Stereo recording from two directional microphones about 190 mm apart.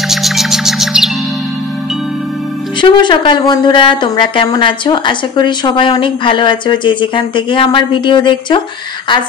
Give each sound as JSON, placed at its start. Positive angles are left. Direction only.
{"t": 0.1, "sound": "music", "side_deg": 0}
{"t": 2.8, "sound": "a woman's voice", "side_deg": 25}